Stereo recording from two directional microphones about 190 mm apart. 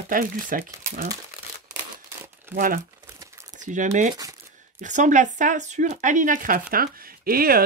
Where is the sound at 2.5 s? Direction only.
50° right (ahead or behind).